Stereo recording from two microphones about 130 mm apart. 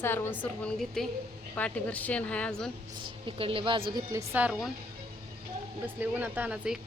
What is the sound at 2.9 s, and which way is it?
Speech, 40° right (ahead or behind).